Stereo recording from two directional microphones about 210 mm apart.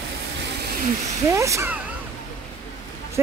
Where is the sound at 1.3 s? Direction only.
15° right (ahead or behind).